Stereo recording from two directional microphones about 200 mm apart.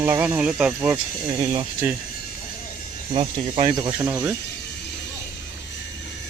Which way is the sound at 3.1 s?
25° right (ahead or behind).